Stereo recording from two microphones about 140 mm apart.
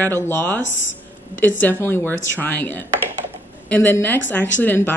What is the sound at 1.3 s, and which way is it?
Speech, 15° left (ahead or behind).